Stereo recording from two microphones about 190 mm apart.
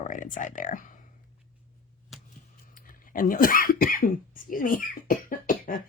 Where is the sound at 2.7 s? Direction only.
45° left (ahead or behind).